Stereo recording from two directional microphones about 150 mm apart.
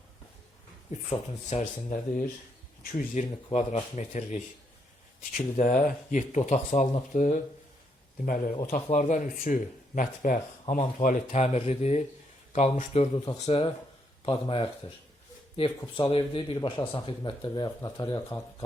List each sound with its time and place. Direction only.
1.5 s speech: 55° left (ahead or behind)
2.8 s speech: 70° left (ahead or behind)
3.5 s speech: 45° left (ahead or behind)
5.5 s speech: 55° left (ahead or behind); by 18.3 s 25° left (ahead or behind)